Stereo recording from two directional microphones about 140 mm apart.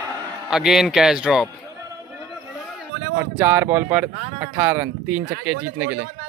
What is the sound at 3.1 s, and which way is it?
Speech, 15° right (ahead or behind).